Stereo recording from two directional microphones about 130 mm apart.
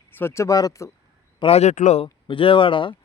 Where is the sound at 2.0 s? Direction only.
45° left (ahead or behind).